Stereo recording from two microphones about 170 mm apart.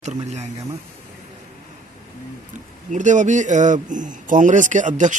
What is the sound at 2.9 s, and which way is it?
A man's voice, 45° right (ahead or behind).